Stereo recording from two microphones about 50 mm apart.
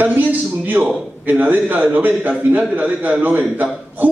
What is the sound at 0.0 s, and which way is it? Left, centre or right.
A man's voice, right.